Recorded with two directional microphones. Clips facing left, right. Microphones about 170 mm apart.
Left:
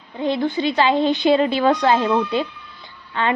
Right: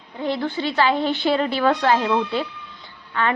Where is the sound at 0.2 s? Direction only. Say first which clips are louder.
Left 3 dB; 20° left (ahead or behind).